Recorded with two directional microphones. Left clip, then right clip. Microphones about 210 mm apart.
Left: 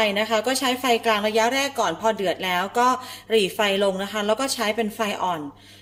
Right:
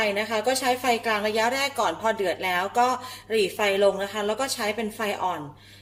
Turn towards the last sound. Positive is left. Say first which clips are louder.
# left 2 dB
turn(degrees=35)  # may be behind; listen again after turning